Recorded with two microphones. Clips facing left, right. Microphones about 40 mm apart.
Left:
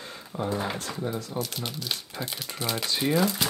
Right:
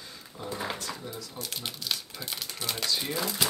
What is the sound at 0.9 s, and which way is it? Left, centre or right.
Speech, left.